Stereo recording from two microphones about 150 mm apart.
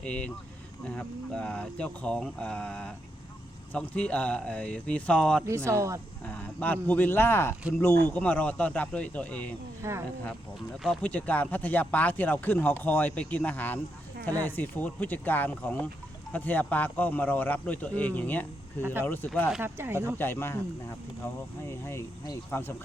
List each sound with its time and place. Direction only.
0.0 s speech: 10° left (ahead or behind)
5.5 s speech: 20° right (ahead or behind)
6.2 s speech: 10° left (ahead or behind)
9.8 s speech: 20° right (ahead or behind)
11.0 s speech: 10° left (ahead or behind)
19.6 s speech: 15° right (ahead or behind)
20.1 s speech: 15° left (ahead or behind)
21.7 s speech: 20° left (ahead or behind)